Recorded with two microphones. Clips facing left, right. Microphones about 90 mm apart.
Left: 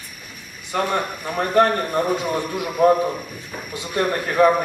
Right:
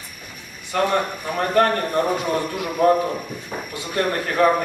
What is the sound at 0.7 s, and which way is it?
A man's voice, 15° left (ahead or behind).